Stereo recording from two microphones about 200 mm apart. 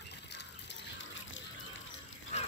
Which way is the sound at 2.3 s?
35° left (ahead or behind).